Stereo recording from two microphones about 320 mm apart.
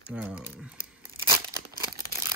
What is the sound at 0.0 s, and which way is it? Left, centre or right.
Tearing, centre.